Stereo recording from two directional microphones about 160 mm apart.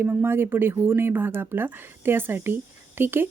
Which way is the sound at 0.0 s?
15° right (ahead or behind).